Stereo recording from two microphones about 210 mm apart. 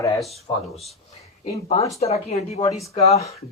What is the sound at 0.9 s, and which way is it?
Speech, 30° left (ahead or behind).